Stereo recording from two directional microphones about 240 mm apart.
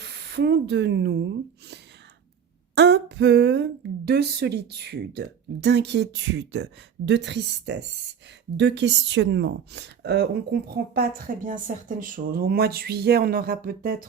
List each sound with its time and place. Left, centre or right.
0.0 s a woman's voice: right